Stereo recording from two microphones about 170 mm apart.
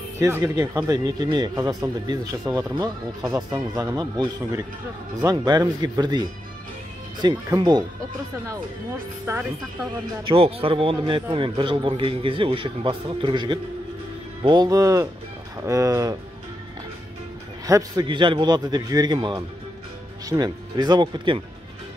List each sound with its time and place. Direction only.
0.2 s a man's voice: 20° right (ahead or behind)
9.3 s speech: 15° right (ahead or behind)
10.2 s a man's voice: 35° right (ahead or behind)
17.6 s a man's voice: 20° right (ahead or behind)